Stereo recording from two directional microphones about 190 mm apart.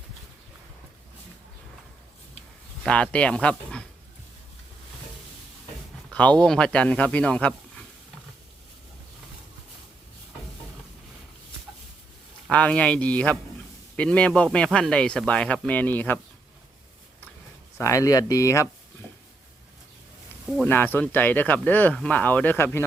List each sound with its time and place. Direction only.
2.8 s speech: 5° left (ahead or behind)
6.1 s speech: 5° left (ahead or behind)
12.5 s speech: 5° left (ahead or behind)
17.7 s speech: 15° left (ahead or behind)
20.7 s speech: 10° left (ahead or behind)